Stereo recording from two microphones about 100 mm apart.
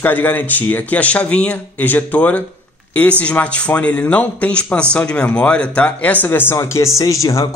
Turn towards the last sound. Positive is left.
turn(degrees=30)  # may be behind; listen again after turning